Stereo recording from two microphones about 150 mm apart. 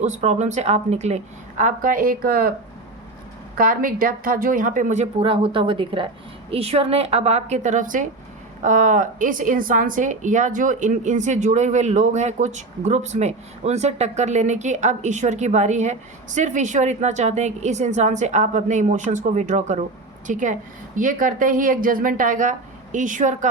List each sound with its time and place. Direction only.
0.0 s speech: 50° right (ahead or behind); by 2.5 s 75° right (ahead or behind)
3.6 s a woman's voice: 70° right (ahead or behind)
5.2 s a woman's voice: 35° right (ahead or behind); by 23.5 s 60° right (ahead or behind)